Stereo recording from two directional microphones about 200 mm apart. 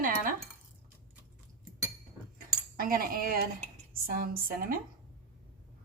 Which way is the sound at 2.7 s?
45° right (ahead or behind).